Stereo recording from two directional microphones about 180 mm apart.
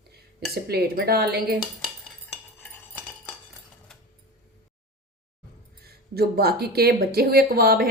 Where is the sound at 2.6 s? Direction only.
Centre (ahead or behind).